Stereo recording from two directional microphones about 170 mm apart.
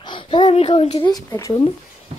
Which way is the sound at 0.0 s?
30° left (ahead or behind).